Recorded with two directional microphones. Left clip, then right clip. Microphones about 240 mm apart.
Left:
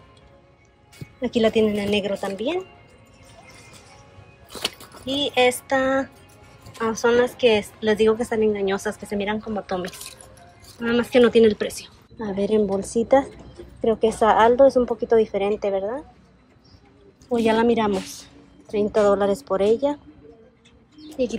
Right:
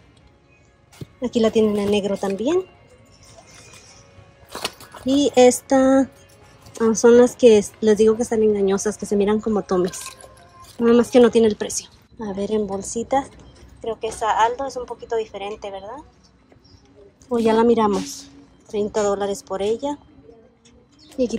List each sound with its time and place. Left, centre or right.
1.2 s a woman's voice: centre
5.0 s a woman's voice: right
14.9 s a woman's voice: centre
17.3 s a woman's voice: centre
21.2 s a woman's voice: centre